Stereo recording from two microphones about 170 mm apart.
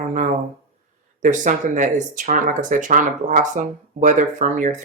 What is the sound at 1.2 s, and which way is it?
Speech, 50° right (ahead or behind).